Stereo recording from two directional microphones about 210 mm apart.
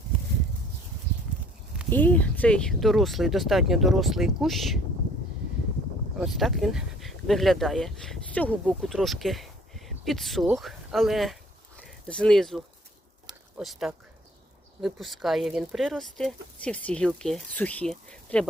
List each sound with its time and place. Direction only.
1.9 s speech: 10° left (ahead or behind)
6.1 s speech: centre (ahead or behind)
13.2 s a sound: centre (ahead or behind)
14.8 s speech: centre (ahead or behind)